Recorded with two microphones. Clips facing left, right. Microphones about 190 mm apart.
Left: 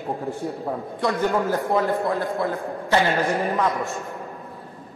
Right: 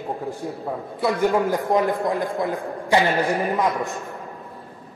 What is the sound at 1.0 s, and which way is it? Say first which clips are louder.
A man's voice: right 2 dB; 5° right (ahead or behind).